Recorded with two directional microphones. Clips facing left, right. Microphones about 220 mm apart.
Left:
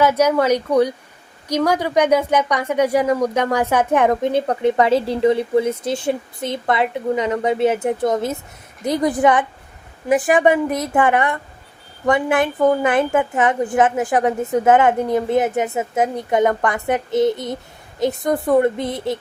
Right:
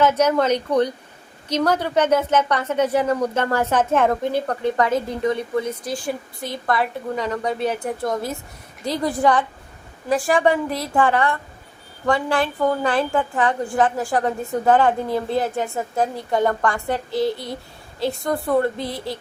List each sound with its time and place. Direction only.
0.0 s a woman's voice: 10° left (ahead or behind)